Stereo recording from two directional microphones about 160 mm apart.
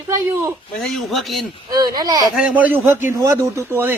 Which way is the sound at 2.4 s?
5° right (ahead or behind).